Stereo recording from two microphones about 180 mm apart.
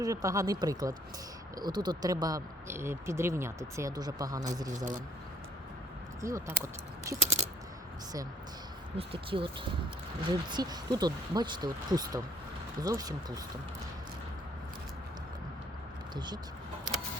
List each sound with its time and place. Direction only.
0.0 s speech: 20° right (ahead or behind)
6.2 s speech: 15° right (ahead or behind)
7.2 s a sound: 40° right (ahead or behind)
9.0 s speech: 30° right (ahead or behind)
16.1 s speech: 25° right (ahead or behind)